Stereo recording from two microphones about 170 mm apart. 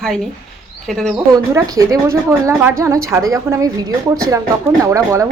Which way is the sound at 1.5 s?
20° right (ahead or behind).